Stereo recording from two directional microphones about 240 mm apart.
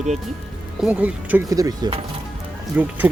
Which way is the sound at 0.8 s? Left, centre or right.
Centre.